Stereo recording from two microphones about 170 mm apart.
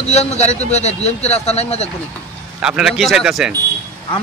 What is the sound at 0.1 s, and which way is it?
Speech, 40° left (ahead or behind).